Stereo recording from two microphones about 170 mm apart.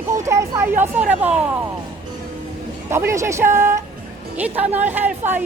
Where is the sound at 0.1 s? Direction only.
15° right (ahead or behind).